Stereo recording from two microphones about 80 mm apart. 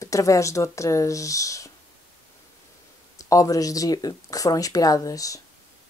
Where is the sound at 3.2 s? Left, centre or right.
Left.